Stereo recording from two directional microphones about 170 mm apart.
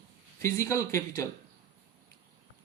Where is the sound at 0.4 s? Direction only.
20° left (ahead or behind).